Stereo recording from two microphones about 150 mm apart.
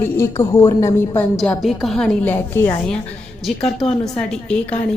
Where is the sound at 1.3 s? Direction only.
5° left (ahead or behind).